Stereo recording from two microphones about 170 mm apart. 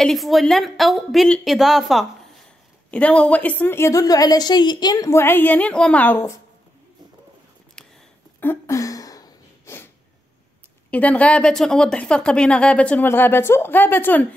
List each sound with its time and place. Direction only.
0.0 s a woman's voice: centre (ahead or behind)
8.4 s a sound: 15° left (ahead or behind)
10.9 s a woman's voice: 10° left (ahead or behind)